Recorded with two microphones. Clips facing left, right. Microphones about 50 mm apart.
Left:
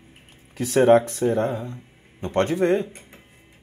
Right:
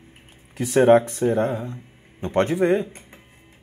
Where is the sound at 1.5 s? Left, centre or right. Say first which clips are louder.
Right 1 dB; right.